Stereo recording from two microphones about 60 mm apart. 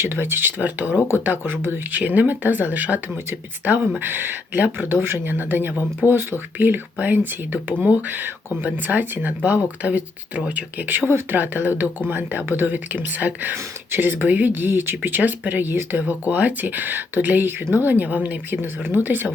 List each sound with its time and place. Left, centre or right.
0.0 s speech: right
0.6 s speech: right
0.9 s speech: left
1.2 s speech: right